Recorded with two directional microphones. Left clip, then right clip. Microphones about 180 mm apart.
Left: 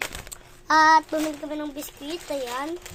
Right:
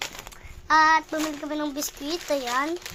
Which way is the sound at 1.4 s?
15° right (ahead or behind).